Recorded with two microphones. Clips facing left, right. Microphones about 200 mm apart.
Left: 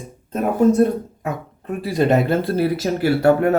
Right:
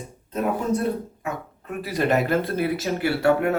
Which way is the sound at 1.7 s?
25° left (ahead or behind).